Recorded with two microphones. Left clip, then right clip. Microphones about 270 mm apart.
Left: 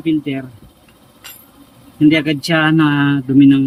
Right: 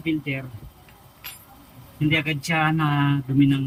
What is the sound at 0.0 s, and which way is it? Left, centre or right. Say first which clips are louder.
Speech: left 8 dB; left.